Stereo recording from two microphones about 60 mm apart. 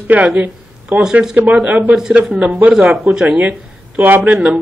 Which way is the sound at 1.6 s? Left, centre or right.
Right.